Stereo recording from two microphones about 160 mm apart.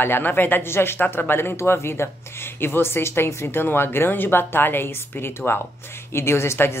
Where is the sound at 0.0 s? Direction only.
15° left (ahead or behind).